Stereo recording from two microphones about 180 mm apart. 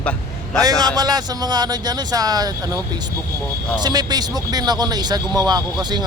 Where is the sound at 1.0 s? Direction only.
20° right (ahead or behind).